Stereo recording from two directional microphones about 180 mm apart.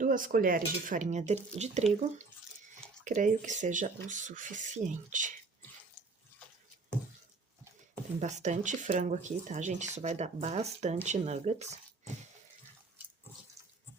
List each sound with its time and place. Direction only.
0.0 s cutlery: 50° right (ahead or behind)
1.5 s speech: 40° right (ahead or behind)
3.0 s cutlery: 45° right (ahead or behind)
8.2 s speech: 40° right (ahead or behind)